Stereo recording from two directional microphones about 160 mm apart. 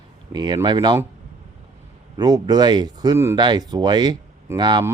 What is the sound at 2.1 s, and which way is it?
Speech, 25° right (ahead or behind).